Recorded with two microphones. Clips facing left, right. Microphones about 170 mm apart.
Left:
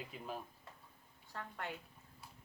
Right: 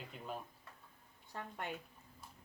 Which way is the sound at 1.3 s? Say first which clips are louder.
Right 1 dB; 20° right (ahead or behind).